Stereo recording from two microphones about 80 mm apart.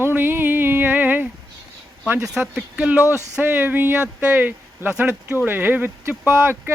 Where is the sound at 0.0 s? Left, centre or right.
Right.